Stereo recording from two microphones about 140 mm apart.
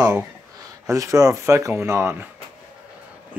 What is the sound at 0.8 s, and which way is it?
Speech, 20° right (ahead or behind).